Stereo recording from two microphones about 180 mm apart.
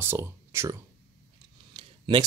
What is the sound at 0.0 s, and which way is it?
Speech, 15° right (ahead or behind).